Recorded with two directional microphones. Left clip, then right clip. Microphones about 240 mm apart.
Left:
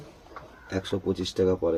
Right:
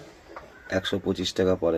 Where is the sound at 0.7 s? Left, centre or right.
Centre.